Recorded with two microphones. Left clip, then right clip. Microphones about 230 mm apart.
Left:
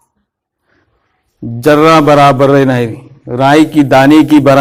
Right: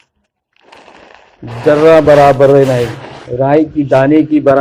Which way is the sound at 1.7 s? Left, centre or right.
Left.